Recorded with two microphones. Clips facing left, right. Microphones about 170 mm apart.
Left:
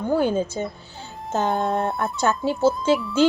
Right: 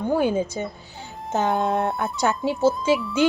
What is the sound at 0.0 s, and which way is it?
Speech, 15° right (ahead or behind).